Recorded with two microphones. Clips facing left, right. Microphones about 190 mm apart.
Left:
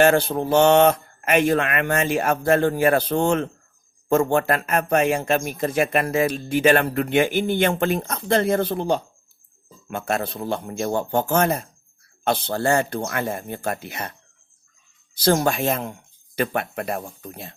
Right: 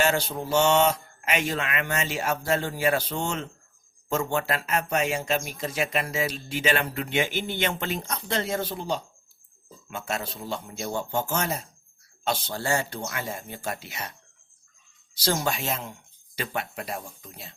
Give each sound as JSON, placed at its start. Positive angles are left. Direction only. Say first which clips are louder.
{"t": 0.0, "sound": "speech", "louder": "left 8 dB", "side_deg": 55}